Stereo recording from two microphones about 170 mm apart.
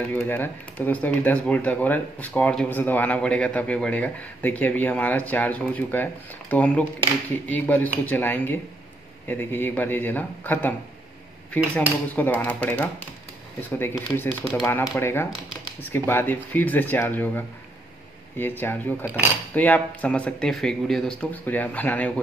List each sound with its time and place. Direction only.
0.1 s speech: 10° left (ahead or behind)
12.2 s speech: 10° left (ahead or behind)